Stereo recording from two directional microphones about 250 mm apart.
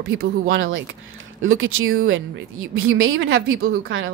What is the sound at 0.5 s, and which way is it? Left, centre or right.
A woman's voice, right.